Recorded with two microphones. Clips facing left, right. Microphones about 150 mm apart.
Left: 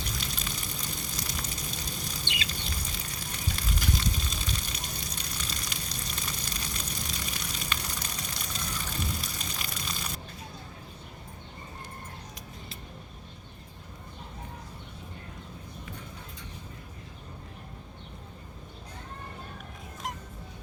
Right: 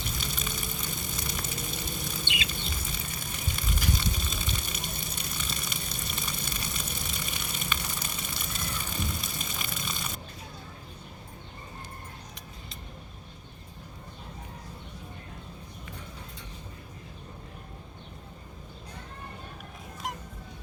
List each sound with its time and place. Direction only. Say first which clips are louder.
0.0 s water: right 1 dB; centre (ahead or behind)
2.2 s patter: right 2 dB; 20° right (ahead or behind)
2.5 s a sound: right 1 dB; centre (ahead or behind)